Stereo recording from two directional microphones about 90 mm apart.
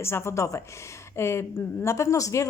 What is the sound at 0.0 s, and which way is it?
A woman's voice, 30° left (ahead or behind).